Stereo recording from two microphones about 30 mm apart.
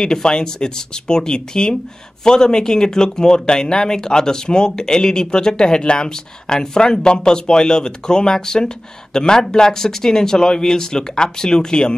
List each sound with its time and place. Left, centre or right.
0.0 s speech: left